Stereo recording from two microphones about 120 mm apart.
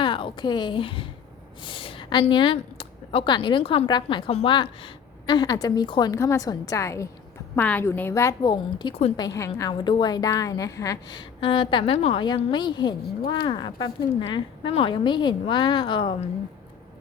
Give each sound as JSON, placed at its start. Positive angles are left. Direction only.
{"t": 0.0, "sound": "a woman's voice", "side_deg": 45}
{"t": 1.6, "sound": "a sound", "side_deg": 45}
{"t": 2.3, "sound": "speech", "side_deg": 45}
{"t": 3.8, "sound": "a woman's voice", "side_deg": 35}
{"t": 4.3, "sound": "a woman's voice", "side_deg": 55}
{"t": 4.5, "sound": "a woman's voice", "side_deg": 45}
{"t": 8.4, "sound": "a woman's voice", "side_deg": 40}
{"t": 9.1, "sound": "a woman's voice", "side_deg": 30}